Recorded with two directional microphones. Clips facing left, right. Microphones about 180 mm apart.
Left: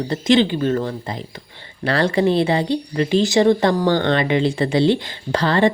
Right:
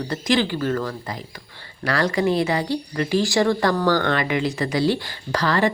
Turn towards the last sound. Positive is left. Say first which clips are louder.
# left 4 dB
turn(degrees=25)  # may be behind; listen again after turning